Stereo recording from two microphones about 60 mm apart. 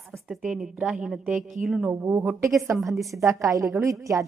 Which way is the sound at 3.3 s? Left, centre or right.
Right.